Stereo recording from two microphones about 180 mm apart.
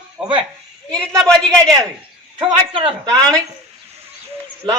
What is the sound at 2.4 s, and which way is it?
Speech, 30° right (ahead or behind).